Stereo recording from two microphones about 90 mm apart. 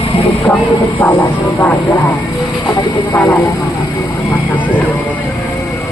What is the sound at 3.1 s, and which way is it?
Speech, 20° left (ahead or behind).